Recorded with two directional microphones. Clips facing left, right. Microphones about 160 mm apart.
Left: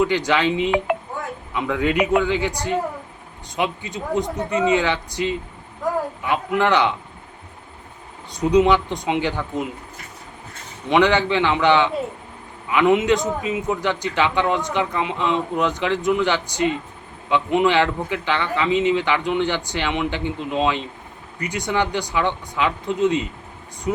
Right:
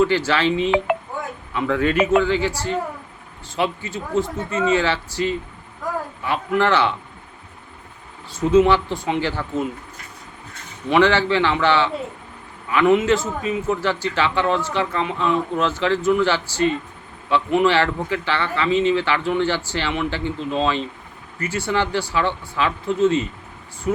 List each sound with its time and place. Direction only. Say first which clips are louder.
0.3 s a man's voice: even; 15° left (ahead or behind)
8.4 s a man's voice: right 1 dB; 15° left (ahead or behind)
10.8 s a man's voice: even; 20° left (ahead or behind)